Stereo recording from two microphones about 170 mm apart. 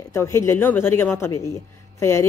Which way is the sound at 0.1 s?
15° left (ahead or behind).